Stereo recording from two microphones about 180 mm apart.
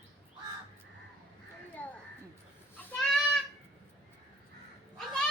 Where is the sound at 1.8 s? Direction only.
10° left (ahead or behind).